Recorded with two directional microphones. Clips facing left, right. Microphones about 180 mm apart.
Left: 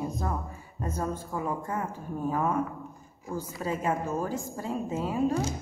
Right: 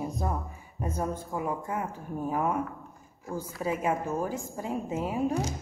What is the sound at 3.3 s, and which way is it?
Speech, 10° right (ahead or behind).